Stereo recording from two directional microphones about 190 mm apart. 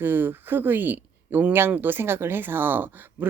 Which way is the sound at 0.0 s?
10° right (ahead or behind).